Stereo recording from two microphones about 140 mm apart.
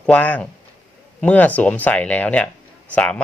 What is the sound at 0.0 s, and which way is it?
Speech, 10° left (ahead or behind).